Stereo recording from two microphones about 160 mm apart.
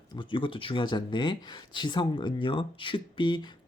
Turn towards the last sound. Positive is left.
turn(degrees=30)  # may be behind; listen again after turning